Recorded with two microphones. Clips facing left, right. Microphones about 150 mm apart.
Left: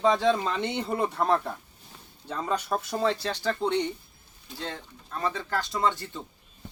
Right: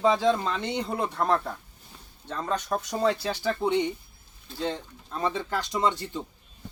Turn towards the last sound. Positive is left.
turn(degrees=-15)  # may be behind; listen again after turning